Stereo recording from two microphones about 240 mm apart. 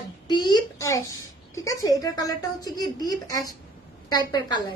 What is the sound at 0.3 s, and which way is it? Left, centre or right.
A woman's voice, centre.